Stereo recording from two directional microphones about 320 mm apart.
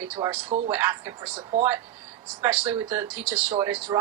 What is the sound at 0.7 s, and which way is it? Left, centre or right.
Speech, centre.